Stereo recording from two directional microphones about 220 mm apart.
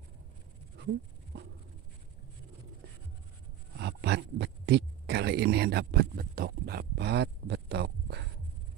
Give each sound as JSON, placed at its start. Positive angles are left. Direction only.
{"t": 3.7, "sound": "speech", "side_deg": -50}